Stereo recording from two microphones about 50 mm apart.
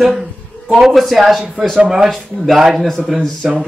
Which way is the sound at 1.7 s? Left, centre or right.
Centre.